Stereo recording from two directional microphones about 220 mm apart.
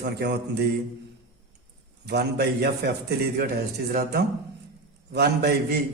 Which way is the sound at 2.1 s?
45° right (ahead or behind).